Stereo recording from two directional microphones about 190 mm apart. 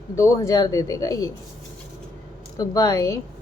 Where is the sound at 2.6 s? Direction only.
20° left (ahead or behind).